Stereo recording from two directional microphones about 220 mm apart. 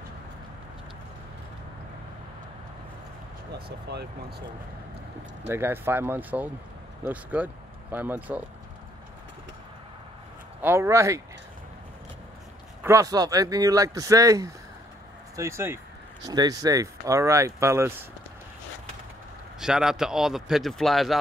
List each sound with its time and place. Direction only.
3.5 s speech: 45° right (ahead or behind)
5.5 s speech: 10° right (ahead or behind)
10.6 s speech: 10° right (ahead or behind)
12.8 s speech: 15° right (ahead or behind)
19.6 s speech: centre (ahead or behind)